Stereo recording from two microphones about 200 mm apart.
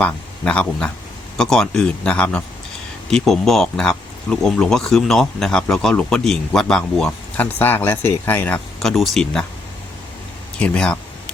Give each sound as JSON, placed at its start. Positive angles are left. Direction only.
{"t": 0.0, "sound": "speech", "side_deg": 5}
{"t": 10.6, "sound": "speech", "side_deg": 5}